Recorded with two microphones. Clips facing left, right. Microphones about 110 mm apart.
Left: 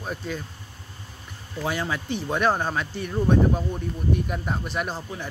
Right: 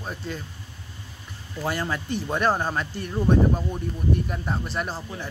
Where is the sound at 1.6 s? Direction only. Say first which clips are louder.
Even; centre (ahead or behind).